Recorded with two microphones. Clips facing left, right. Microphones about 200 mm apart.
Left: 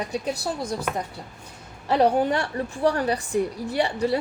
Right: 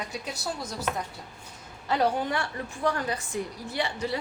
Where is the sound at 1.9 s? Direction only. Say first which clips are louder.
Left 6 dB; 35° left (ahead or behind).